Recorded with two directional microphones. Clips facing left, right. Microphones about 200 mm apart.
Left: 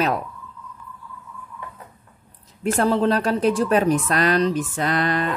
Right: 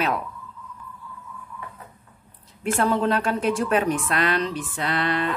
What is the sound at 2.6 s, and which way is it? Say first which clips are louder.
A woman's voice: left 3 dB; 40° left (ahead or behind).